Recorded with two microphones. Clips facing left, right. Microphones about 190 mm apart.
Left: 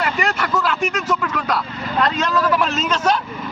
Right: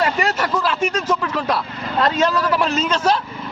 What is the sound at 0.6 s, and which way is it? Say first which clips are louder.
A man's voice: right 1 dB; 35° right (ahead or behind).